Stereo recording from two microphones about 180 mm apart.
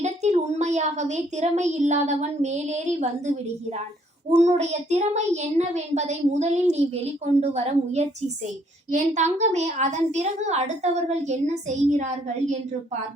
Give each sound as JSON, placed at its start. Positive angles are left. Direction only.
{"t": 0.0, "sound": "a woman's voice", "side_deg": -40}